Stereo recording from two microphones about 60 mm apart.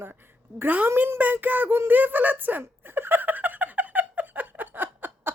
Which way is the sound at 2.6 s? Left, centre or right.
Right.